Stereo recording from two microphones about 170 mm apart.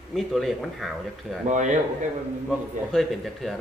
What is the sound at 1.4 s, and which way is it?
Speech, 45° right (ahead or behind).